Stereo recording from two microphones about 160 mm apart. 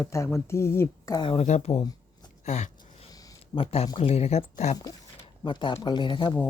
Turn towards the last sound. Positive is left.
turn(degrees=30)  # may be behind; listen again after turning